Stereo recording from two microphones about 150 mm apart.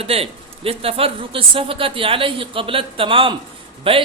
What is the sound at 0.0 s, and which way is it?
Speech, 40° right (ahead or behind).